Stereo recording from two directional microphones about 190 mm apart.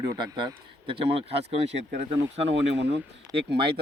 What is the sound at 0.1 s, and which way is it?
A man's voice, 25° right (ahead or behind).